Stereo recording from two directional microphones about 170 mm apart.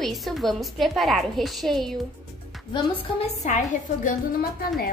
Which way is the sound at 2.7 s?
35° left (ahead or behind).